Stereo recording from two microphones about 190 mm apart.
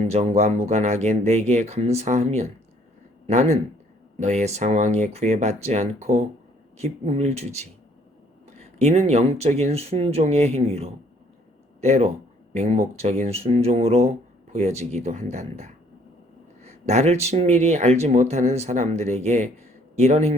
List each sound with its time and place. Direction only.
0.0 s speech: 35° right (ahead or behind)